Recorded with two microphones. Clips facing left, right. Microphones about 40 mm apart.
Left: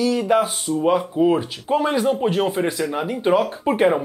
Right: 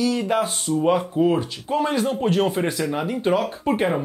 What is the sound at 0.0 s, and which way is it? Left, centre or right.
Speech, centre.